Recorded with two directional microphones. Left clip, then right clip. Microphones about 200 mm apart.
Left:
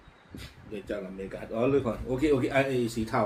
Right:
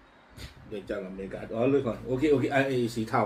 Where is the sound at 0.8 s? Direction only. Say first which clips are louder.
Even; centre (ahead or behind).